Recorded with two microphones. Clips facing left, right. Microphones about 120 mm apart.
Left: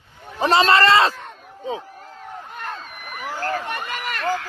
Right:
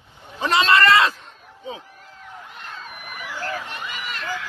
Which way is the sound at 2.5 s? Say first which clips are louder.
Left 5 dB; 50° left (ahead or behind).